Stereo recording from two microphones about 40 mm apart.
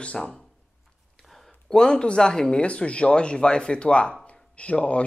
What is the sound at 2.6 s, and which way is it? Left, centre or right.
Speech, left.